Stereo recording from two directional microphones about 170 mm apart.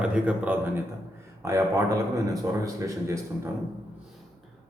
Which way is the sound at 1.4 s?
20° right (ahead or behind).